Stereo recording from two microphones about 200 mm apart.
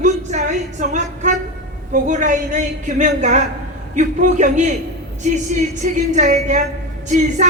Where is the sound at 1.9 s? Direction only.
40° right (ahead or behind).